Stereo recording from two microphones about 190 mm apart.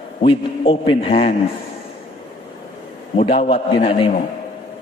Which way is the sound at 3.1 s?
30° left (ahead or behind).